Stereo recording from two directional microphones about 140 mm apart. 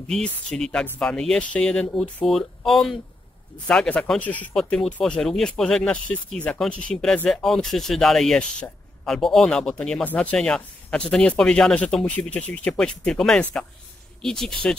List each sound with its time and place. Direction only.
0.1 s speech: 5° left (ahead or behind)